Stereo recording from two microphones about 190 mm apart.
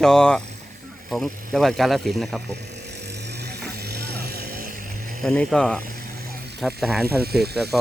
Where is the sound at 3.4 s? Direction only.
55° right (ahead or behind).